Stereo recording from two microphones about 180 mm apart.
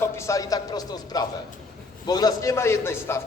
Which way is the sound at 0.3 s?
20° left (ahead or behind).